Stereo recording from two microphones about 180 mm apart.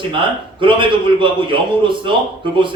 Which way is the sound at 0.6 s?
25° right (ahead or behind).